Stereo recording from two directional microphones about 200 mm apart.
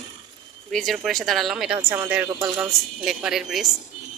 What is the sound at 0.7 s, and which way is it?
Speech, centre (ahead or behind).